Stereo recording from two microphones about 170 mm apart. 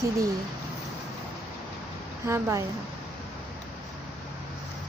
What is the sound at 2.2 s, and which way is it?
Speech, 15° right (ahead or behind).